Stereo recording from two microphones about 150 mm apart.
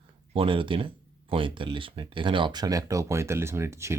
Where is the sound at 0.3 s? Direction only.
35° right (ahead or behind).